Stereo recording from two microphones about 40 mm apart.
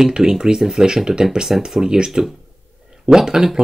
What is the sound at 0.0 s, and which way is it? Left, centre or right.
Speech, centre.